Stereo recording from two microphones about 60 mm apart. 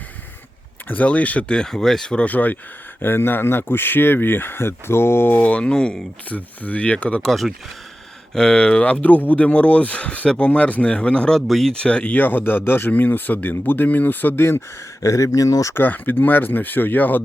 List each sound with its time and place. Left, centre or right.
0.9 s speech: left; by 2.0 s centre
2.0 s speech: left
3.0 s speech: left
5.3 s speech: left
6.2 s speech: left
7.3 s speech: centre
8.4 s speech: centre
11.3 s speech: centre
11.7 s speech: centre; by 14.6 s left
15.0 s speech: left
15.7 s speech: left